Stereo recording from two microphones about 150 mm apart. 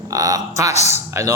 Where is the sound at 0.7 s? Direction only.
50° left (ahead or behind).